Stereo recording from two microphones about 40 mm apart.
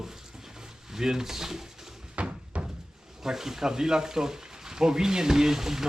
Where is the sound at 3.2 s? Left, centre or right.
Centre.